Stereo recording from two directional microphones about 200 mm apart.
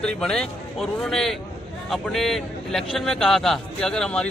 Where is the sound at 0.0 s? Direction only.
5° left (ahead or behind).